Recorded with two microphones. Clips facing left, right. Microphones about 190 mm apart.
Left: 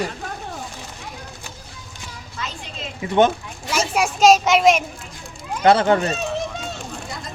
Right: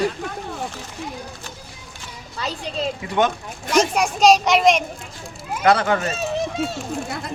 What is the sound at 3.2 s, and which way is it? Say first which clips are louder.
A child's voice: left 2 dB; 5° left (ahead or behind).